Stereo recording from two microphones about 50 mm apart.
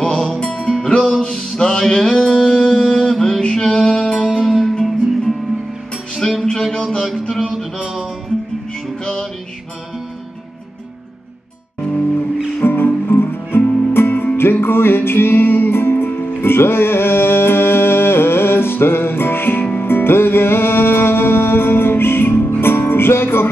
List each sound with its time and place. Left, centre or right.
0.0 s music: centre
4.4 s music: centre
4.7 s music: centre
6.4 s a sound: centre
7.8 s music: centre
9.0 s music: centre
12.6 s music: left